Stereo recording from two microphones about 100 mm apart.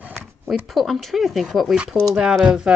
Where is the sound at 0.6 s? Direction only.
Centre (ahead or behind).